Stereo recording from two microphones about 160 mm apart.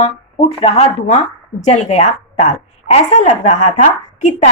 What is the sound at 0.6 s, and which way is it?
A woman's voice, 40° left (ahead or behind).